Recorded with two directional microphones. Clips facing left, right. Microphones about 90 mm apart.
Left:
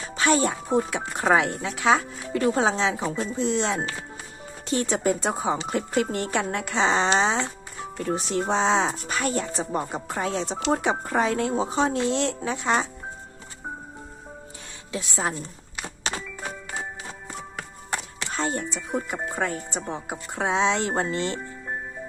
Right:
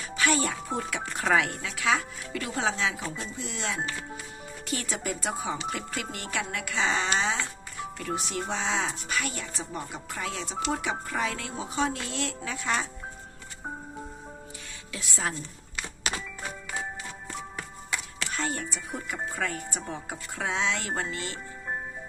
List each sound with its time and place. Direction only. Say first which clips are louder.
0.0 s speech: left 5 dB; 30° left (ahead or behind)
14.9 s a woman's voice: left 5 dB; 25° left (ahead or behind)
16.1 s music: left 2 dB; 35° left (ahead or behind)
18.2 s speech: left 4 dB; 25° left (ahead or behind)